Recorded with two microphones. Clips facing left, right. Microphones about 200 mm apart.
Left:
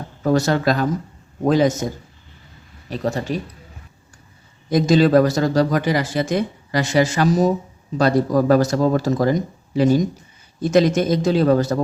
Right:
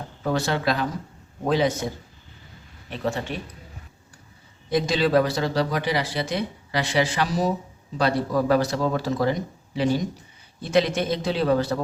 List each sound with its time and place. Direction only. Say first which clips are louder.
0.2 s speech: left 7 dB; 45° left (ahead or behind)
2.9 s speech: left 5 dB; 40° left (ahead or behind)
4.7 s speech: left 6 dB; 45° left (ahead or behind)